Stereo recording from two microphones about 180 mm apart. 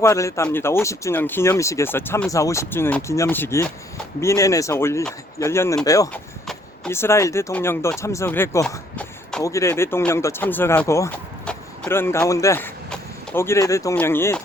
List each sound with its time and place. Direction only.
0.0 s speech: 15° left (ahead or behind)